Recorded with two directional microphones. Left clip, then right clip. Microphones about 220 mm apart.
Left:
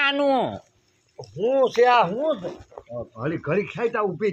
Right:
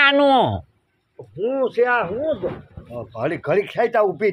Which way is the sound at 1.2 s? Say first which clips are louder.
Left 1 dB; centre (ahead or behind).